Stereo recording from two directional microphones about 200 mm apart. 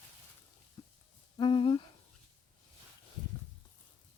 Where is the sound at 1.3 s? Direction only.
25° left (ahead or behind).